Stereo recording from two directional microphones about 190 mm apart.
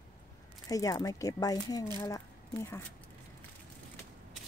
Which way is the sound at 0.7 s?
20° left (ahead or behind).